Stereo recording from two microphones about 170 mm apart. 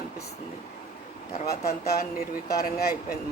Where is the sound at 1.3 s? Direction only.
60° left (ahead or behind).